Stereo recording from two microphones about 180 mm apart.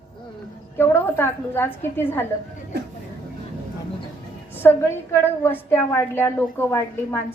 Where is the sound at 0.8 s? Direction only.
15° left (ahead or behind).